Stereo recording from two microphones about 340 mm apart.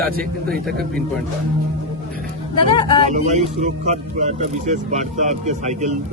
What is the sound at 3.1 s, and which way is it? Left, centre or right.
Speech, centre.